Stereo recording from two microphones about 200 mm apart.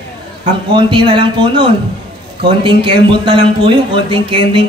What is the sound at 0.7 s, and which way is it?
Speech, 25° right (ahead or behind).